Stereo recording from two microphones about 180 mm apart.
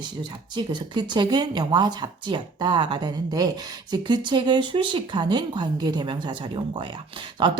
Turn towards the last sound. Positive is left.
turn(degrees=-25)  # may be behind; listen again after turning